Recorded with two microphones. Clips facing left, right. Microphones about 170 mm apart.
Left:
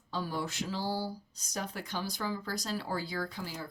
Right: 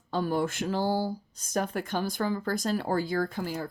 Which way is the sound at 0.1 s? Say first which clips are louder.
Right 8 dB; 55° right (ahead or behind).